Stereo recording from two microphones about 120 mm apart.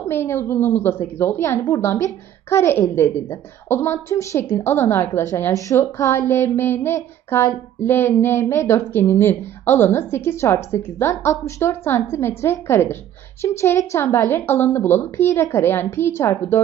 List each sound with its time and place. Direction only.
0.1 s a woman's voice: 20° left (ahead or behind)